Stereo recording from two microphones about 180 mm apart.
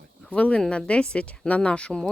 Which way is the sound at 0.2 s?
5° left (ahead or behind).